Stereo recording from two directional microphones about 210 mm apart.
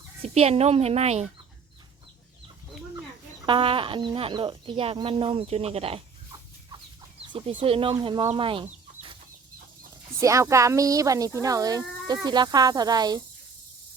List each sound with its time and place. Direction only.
0.2 s speech: 30° right (ahead or behind)
3.4 s speech: 25° right (ahead or behind)
7.6 s speech: 25° right (ahead or behind)
10.2 s speech: 15° right (ahead or behind)